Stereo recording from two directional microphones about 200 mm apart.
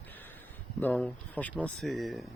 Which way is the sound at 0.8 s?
5° left (ahead or behind).